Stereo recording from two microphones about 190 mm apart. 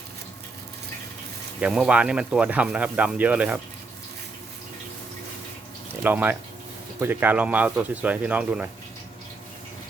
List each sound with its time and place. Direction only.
1.6 s speech: 5° right (ahead or behind)
6.0 s speech: 10° right (ahead or behind)